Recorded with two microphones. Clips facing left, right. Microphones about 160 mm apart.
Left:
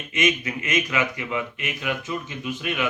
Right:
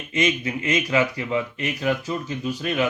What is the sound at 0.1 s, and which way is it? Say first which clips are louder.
Speech: right 1 dB; 30° right (ahead or behind).